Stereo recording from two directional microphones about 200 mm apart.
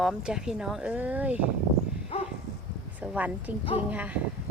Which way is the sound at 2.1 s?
30° left (ahead or behind).